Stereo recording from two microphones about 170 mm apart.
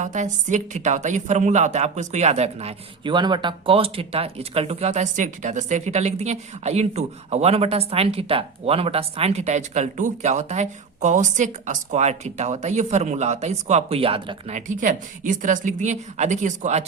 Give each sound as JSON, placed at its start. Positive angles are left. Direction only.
{"t": 0.0, "sound": "a woman's voice", "side_deg": -45}